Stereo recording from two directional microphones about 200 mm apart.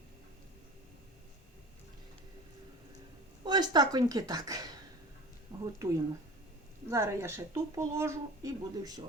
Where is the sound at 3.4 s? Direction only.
20° right (ahead or behind).